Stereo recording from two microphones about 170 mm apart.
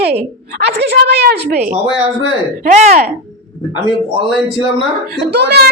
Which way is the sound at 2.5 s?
45° right (ahead or behind).